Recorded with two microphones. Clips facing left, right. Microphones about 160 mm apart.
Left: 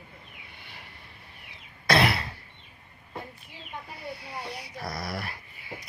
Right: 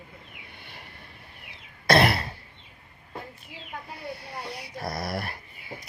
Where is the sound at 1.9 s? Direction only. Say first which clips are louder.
Right 3 dB; 50° right (ahead or behind).